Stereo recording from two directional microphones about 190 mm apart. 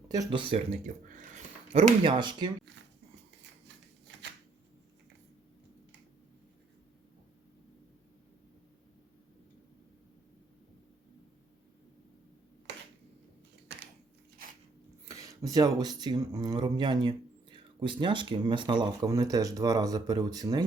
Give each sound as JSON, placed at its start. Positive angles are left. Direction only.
{"t": 0.1, "sound": "speech", "side_deg": -25}
{"t": 14.4, "sound": "a sound", "side_deg": -50}
{"t": 15.0, "sound": "speech", "side_deg": -15}